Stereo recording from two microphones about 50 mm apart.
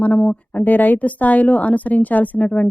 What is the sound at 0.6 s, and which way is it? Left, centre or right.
Speech, left.